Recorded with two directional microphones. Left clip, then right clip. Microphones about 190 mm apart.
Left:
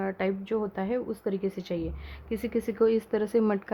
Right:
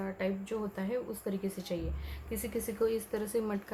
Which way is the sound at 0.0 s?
50° left (ahead or behind).